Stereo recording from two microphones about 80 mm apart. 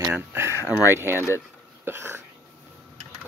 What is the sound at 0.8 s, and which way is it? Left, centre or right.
Speech, right.